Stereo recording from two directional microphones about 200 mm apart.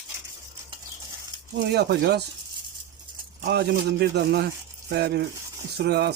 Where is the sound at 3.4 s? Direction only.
55° right (ahead or behind).